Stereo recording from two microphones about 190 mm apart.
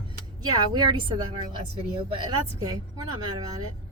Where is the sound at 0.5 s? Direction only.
20° right (ahead or behind).